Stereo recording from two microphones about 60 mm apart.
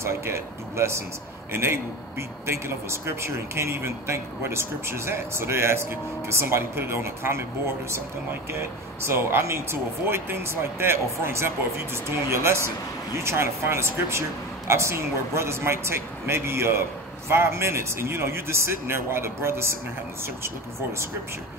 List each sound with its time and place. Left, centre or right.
0.0 s a man's voice: right
9.0 s a man's voice: right